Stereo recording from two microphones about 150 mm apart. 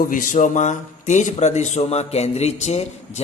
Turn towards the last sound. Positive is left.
turn(degrees=45)  # may be behind; listen again after turning